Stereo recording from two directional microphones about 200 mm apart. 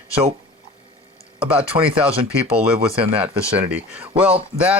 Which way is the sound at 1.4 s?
5° right (ahead or behind).